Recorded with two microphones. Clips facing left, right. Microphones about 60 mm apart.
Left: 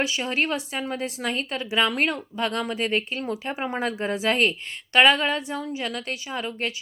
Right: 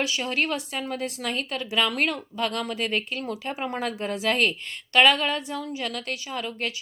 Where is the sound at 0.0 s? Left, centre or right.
Left.